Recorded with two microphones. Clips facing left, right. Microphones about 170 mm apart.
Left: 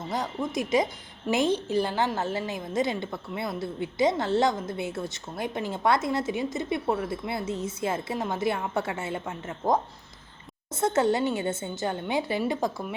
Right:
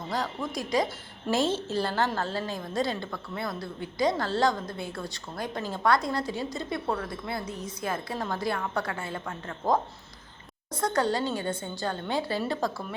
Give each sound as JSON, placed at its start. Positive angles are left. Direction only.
{"t": 0.1, "sound": "a woman's voice", "side_deg": 20}